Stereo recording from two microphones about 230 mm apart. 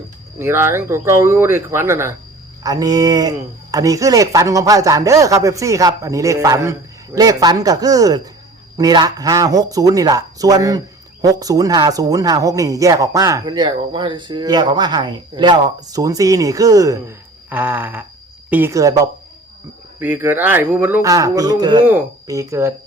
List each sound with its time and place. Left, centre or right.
0.3 s speech: centre